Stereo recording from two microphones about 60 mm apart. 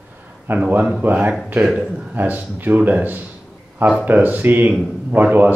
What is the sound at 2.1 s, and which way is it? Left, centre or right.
Speech, right.